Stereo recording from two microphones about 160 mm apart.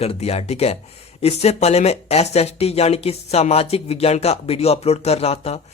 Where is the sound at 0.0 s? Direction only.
40° left (ahead or behind).